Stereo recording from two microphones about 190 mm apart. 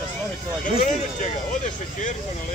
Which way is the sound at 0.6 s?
45° left (ahead or behind).